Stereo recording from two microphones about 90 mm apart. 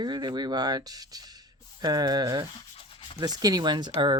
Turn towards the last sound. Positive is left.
turn(degrees=-55)  # may be behind; listen again after turning